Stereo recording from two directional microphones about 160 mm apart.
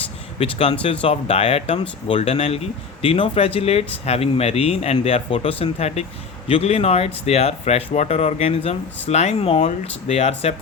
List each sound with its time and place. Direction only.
0.3 s speech: 35° left (ahead or behind)